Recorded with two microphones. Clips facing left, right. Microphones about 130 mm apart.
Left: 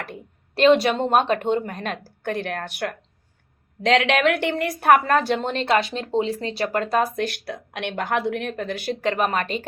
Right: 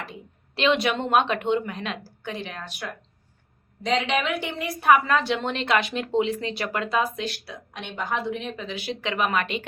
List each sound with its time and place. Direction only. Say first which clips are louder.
0.0 s a woman's voice: left 3 dB; 50° left (ahead or behind)
7.3 s a woman's voice: left 3 dB; 60° left (ahead or behind); by 9.6 s 40° left (ahead or behind)